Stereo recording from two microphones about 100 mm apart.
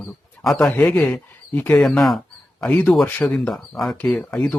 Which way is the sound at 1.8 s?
5° left (ahead or behind).